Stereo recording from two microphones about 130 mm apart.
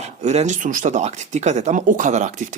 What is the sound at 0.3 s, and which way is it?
Speech, 65° right (ahead or behind).